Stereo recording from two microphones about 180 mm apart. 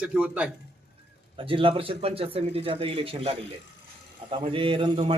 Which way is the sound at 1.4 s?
30° right (ahead or behind).